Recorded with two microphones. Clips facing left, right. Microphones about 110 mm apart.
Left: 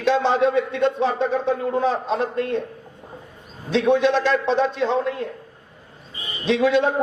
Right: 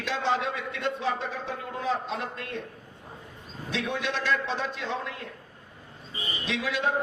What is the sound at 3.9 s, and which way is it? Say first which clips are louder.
A man's voice: left 10 dB; 30° left (ahead or behind).